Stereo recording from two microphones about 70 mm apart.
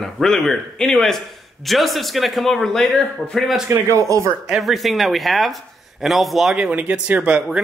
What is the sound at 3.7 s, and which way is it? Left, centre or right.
Speech, right.